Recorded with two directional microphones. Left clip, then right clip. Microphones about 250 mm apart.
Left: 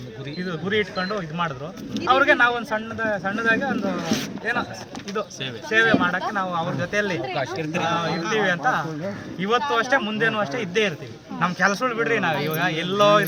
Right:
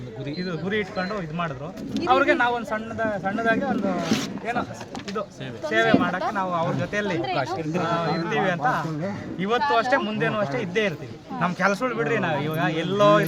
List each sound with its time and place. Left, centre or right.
0.3 s speech: centre
5.7 s speech: centre
7.2 s speech: right
7.9 s speech: centre